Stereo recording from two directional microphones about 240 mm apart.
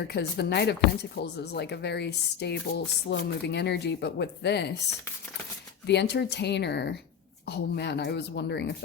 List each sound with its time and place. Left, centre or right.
0.1 s speech: left
5.8 s speech: left